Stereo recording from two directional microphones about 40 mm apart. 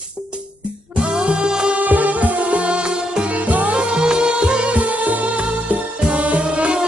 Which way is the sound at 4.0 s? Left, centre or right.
Right.